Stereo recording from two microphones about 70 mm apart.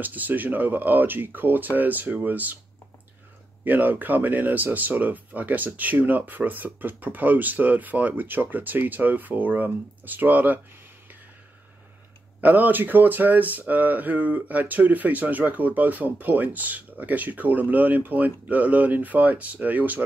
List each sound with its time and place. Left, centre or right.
0.0 s speech: right
3.6 s speech: right
12.4 s speech: right